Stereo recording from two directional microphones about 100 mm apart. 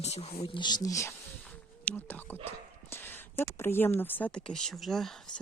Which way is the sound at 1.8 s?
20° left (ahead or behind).